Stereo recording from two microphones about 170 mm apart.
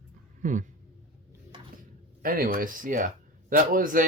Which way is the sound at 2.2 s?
55° right (ahead or behind).